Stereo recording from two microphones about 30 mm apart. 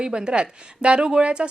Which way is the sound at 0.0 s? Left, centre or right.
Right.